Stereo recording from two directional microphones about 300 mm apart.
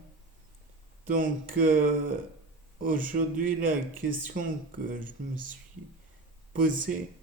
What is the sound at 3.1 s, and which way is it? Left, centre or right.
Speech, right.